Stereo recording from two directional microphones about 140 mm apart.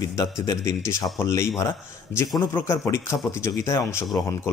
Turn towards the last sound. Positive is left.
turn(degrees=20)  # may be behind; listen again after turning